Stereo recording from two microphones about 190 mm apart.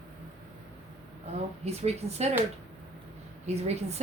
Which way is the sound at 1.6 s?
35° right (ahead or behind).